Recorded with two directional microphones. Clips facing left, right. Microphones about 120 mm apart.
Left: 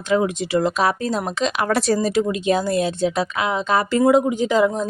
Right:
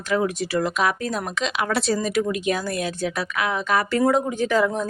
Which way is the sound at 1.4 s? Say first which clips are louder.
Left 3 dB; 40° left (ahead or behind).